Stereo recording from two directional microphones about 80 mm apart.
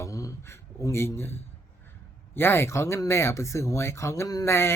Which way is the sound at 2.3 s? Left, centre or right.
Left.